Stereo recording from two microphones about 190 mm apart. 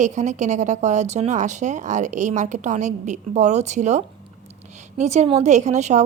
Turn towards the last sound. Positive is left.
turn(degrees=-35)  # may be behind; listen again after turning